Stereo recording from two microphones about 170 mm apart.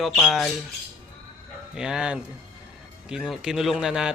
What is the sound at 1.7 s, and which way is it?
Speech, 5° right (ahead or behind).